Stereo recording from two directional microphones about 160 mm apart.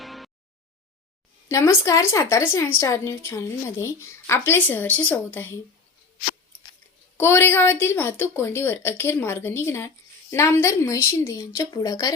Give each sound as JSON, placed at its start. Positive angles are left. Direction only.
{"t": 0.0, "sound": "a sound", "side_deg": 0}
{"t": 1.5, "sound": "a woman's voice", "side_deg": 20}
{"t": 7.2, "sound": "a woman's voice", "side_deg": 15}